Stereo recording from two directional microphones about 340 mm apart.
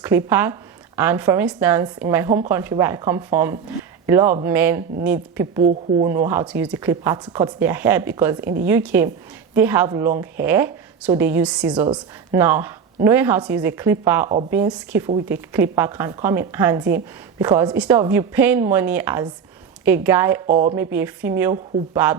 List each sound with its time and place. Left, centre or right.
0.3 s speech: centre
20.5 s speech: centre
20.7 s speech: centre